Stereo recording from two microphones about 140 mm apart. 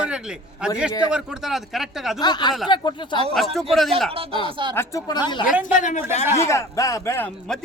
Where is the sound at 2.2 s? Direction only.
30° left (ahead or behind).